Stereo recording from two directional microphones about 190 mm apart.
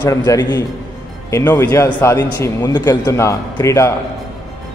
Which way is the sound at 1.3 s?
10° left (ahead or behind).